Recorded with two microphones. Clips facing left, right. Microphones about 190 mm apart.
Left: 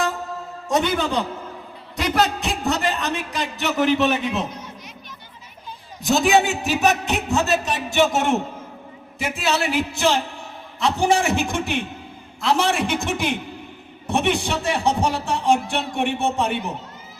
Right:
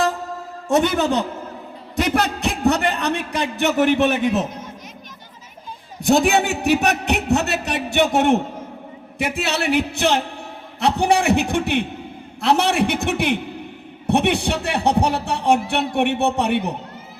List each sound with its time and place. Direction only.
0.9 s a man's voice: 45° right (ahead or behind)
2.0 s a man's voice: 60° right (ahead or behind)
6.0 s speech: 60° right (ahead or behind)